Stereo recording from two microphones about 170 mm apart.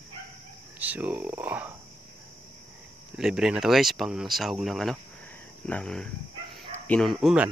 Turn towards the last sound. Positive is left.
turn(degrees=-5)  # may be behind; listen again after turning